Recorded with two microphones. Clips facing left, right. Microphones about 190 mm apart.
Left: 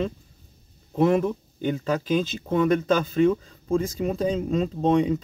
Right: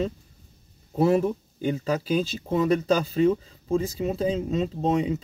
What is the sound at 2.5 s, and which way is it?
Speech, 35° right (ahead or behind).